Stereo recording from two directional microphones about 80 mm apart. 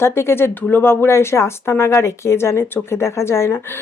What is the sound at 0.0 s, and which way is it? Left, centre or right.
Speech, left.